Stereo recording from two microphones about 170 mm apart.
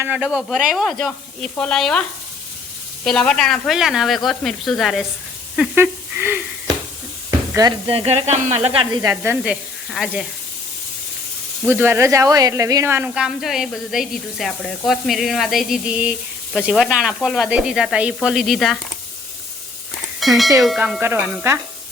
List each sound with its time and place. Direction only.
0.0 s speech: 5° right (ahead or behind)
5.5 s speech: 10° right (ahead or behind)
7.3 s sizzle: 15° right (ahead or behind)
7.9 s speech: 35° right (ahead or behind); by 10.2 s centre (ahead or behind)
11.6 s speech: 15° right (ahead or behind)
20.1 s speech: centre (ahead or behind)